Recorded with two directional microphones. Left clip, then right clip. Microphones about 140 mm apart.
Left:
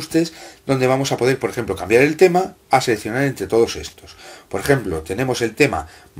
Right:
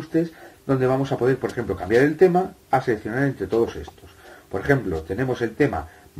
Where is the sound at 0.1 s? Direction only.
15° left (ahead or behind).